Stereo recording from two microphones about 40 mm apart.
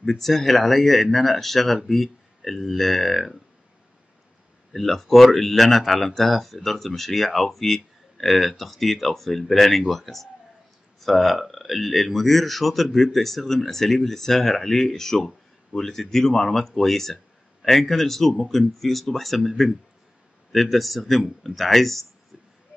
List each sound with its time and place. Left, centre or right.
0.0 s speech: centre
4.7 s speech: centre